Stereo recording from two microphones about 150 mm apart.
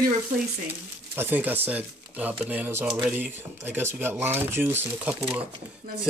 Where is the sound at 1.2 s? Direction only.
15° right (ahead or behind).